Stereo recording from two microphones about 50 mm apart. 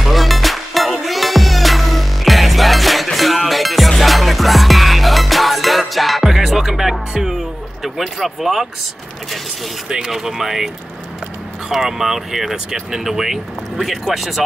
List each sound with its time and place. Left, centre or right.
0.0 s music: centre
7.8 s speech: centre
9.8 s speech: centre
11.7 s speech: centre